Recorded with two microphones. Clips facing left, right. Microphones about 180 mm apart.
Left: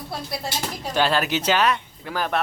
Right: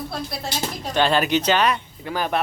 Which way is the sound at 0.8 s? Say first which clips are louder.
Right 2 dB; 5° left (ahead or behind).